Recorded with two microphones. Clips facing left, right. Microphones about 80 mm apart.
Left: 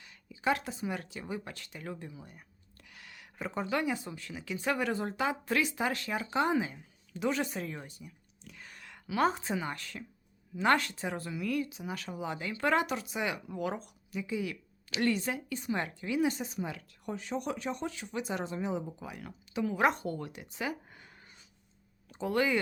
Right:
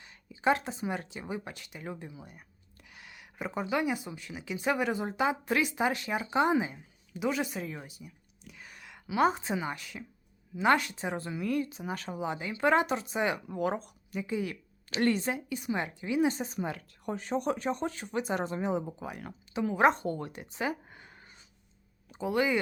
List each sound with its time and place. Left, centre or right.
0.0 s speech: right
16.6 s speech: right
19.5 s speech: right
22.1 s speech: centre